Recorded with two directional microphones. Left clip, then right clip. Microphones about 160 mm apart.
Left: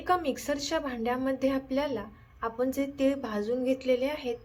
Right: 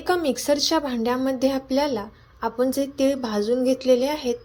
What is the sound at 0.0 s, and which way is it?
A woman's voice, 30° right (ahead or behind).